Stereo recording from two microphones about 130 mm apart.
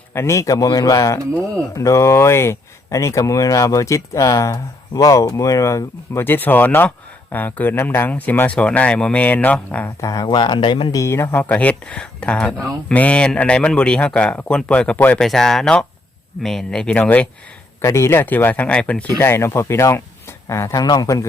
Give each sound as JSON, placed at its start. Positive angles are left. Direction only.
{"t": 0.1, "sound": "speech", "side_deg": 20}
{"t": 10.0, "sound": "speech", "side_deg": 25}
{"t": 10.9, "sound": "speech", "side_deg": 20}
{"t": 15.3, "sound": "speech", "side_deg": 0}